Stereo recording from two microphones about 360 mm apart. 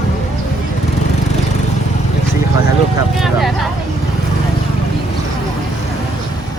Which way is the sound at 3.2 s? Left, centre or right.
Centre.